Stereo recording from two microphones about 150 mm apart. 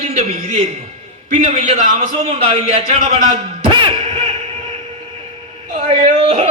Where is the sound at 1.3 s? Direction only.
55° right (ahead or behind).